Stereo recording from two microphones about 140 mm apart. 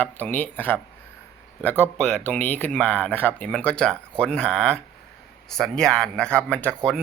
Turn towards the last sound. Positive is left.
turn(degrees=5)  # may be behind; listen again after turning